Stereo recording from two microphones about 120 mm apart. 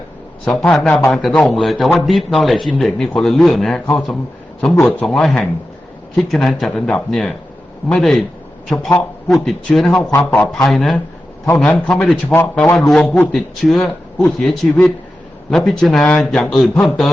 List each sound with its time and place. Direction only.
0.4 s a man's voice: 5° left (ahead or behind)
10.1 s a man's voice: 15° left (ahead or behind)
10.5 s a man's voice: centre (ahead or behind)
12.7 s a man's voice: 5° left (ahead or behind)